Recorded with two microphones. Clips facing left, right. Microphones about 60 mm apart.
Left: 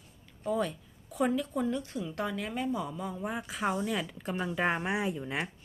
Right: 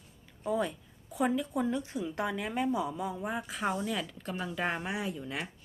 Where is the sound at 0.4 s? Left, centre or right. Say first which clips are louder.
Even; centre.